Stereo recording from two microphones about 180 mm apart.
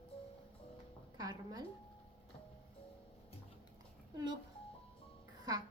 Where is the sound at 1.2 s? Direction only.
20° right (ahead or behind).